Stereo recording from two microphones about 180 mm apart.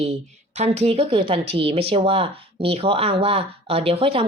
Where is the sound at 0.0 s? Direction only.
35° right (ahead or behind).